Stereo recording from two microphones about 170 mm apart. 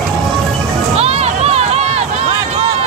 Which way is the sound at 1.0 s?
35° right (ahead or behind).